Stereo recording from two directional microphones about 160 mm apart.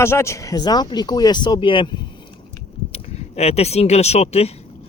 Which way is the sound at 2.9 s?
40° left (ahead or behind).